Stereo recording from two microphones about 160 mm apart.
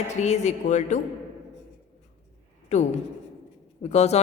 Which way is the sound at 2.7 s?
45° left (ahead or behind).